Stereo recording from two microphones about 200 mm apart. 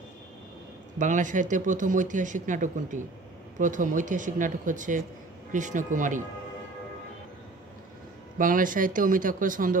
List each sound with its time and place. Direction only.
0.9 s speech: 40° right (ahead or behind)
8.4 s speech: 40° right (ahead or behind)